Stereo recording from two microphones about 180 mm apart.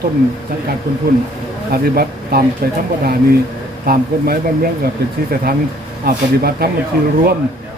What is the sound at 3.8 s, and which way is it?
Speech, 55° right (ahead or behind).